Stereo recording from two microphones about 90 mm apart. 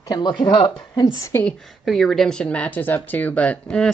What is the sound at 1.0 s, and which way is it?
Speech, 40° left (ahead or behind).